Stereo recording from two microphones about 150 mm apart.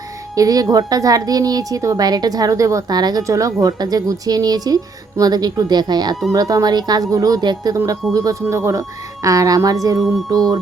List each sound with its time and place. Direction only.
0.3 s speech: 25° right (ahead or behind)